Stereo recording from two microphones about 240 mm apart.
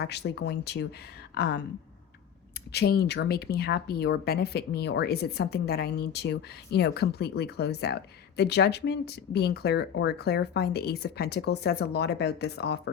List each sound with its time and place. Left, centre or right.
0.0 s speech: left
2.7 s speech: left